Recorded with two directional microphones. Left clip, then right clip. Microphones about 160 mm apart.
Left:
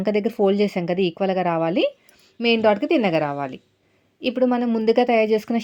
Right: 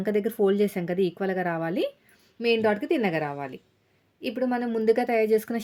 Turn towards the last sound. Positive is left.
turn(degrees=10)  # may be behind; listen again after turning